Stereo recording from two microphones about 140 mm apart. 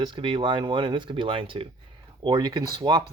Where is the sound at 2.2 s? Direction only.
30° right (ahead or behind).